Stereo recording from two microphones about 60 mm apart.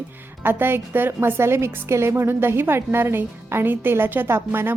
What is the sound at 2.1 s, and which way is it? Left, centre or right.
A woman's voice, right.